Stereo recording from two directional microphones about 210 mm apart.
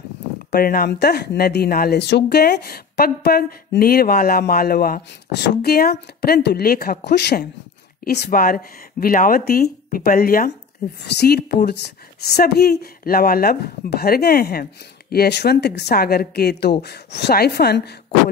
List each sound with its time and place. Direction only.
0.5 s speech: 45° left (ahead or behind)